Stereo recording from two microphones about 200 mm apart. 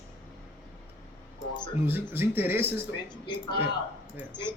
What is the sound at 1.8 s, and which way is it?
Speech, 10° right (ahead or behind).